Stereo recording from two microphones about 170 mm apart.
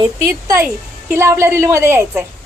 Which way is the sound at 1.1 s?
15° right (ahead or behind).